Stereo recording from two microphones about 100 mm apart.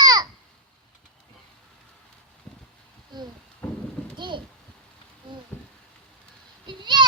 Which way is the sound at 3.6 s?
20° left (ahead or behind).